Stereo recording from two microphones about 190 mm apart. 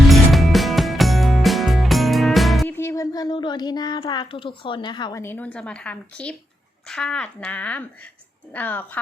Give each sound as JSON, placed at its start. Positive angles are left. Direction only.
{"t": 0.1, "sound": "music", "side_deg": 0}
{"t": 2.7, "sound": "a child's voice", "side_deg": 15}